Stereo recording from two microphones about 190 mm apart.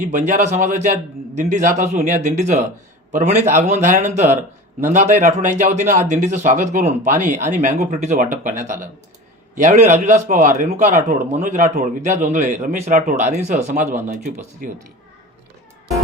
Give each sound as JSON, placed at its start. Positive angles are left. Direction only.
{"t": 0.0, "sound": "speech", "side_deg": -40}